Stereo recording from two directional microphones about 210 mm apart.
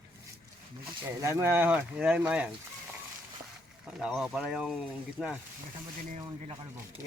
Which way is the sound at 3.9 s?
Centre (ahead or behind).